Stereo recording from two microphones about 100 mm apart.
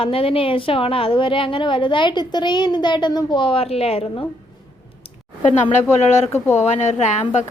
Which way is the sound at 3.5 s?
90° left.